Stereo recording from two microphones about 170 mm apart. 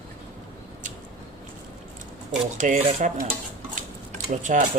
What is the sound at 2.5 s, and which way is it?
Speech, 45° right (ahead or behind).